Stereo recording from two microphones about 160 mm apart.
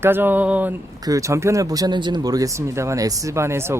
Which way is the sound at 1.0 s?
20° right (ahead or behind).